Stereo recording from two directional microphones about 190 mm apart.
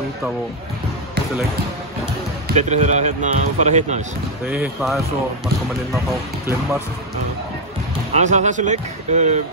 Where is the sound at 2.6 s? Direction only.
40° right (ahead or behind).